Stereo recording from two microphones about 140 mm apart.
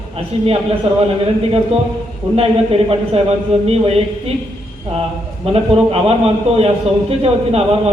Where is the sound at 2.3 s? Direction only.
45° right (ahead or behind).